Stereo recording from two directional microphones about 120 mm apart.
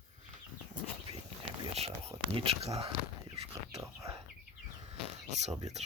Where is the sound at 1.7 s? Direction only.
55° right (ahead or behind).